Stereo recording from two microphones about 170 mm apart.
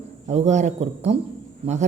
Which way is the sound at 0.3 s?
40° right (ahead or behind).